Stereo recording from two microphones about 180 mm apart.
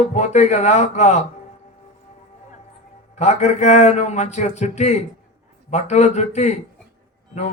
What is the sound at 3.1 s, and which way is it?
Speech, 40° left (ahead or behind).